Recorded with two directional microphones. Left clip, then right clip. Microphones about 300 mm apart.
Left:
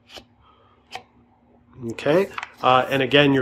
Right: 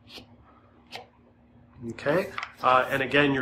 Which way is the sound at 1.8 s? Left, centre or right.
Left.